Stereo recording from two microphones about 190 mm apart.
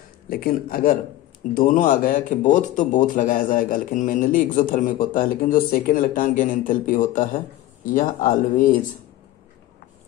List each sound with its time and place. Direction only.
0.3 s speech: 50° left (ahead or behind)